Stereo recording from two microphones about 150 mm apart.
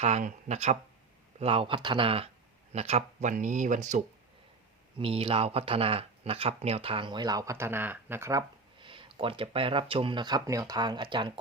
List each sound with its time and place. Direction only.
0.0 s speech: 50° right (ahead or behind)
1.4 s speech: 40° right (ahead or behind); by 4.0 s 55° right (ahead or behind)
4.9 s speech: 40° right (ahead or behind); by 8.4 s 20° right (ahead or behind)
8.8 s speech: 35° right (ahead or behind)